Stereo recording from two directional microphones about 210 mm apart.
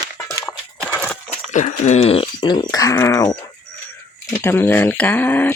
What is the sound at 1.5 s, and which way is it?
Speech, 35° left (ahead or behind).